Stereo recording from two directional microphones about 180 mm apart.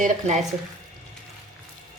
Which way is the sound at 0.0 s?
40° right (ahead or behind).